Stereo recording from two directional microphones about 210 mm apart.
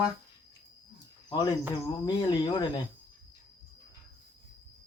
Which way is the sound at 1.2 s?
20° left (ahead or behind).